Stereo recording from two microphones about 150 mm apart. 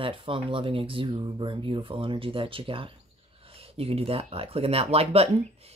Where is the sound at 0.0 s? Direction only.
35° right (ahead or behind).